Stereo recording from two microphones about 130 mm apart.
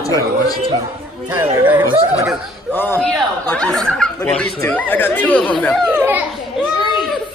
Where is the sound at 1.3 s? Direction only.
15° right (ahead or behind).